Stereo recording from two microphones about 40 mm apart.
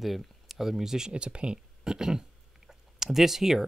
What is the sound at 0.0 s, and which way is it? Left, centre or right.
Speech, centre.